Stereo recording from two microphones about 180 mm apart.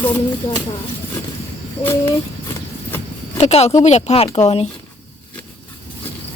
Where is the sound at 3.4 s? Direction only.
35° left (ahead or behind).